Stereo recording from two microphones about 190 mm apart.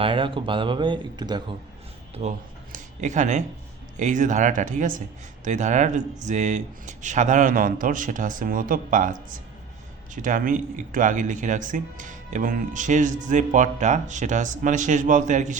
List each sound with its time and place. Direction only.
0.0 s speech: 25° right (ahead or behind)
2.2 s a man's voice: 40° right (ahead or behind)
10.2 s speech: 45° right (ahead or behind)